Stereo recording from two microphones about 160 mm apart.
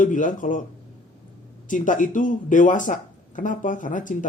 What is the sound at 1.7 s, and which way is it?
Speech, 55° left (ahead or behind).